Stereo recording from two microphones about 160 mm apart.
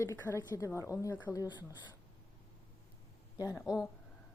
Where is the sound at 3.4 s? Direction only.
20° left (ahead or behind).